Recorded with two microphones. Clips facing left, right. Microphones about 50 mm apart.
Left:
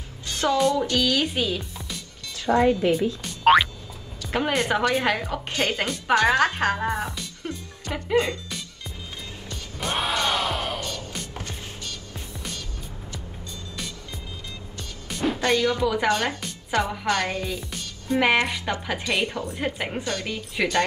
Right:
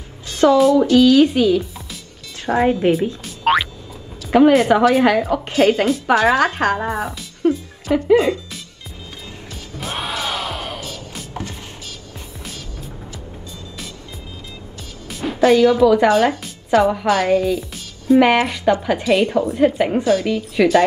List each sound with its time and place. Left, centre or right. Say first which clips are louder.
0.3 s a woman's voice: right 9 dB; centre
2.5 s a woman's voice: right 4 dB; right
3.3 s music: left 1 dB; centre
4.3 s a woman's voice: right 11 dB; centre
9.5 s music: even; centre
15.0 s a woman's voice: right 8 dB; centre